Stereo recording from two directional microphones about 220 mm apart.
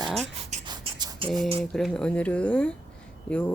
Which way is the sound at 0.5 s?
20° right (ahead or behind).